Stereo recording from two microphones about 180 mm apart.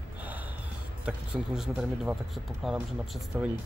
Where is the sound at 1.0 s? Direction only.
5° right (ahead or behind).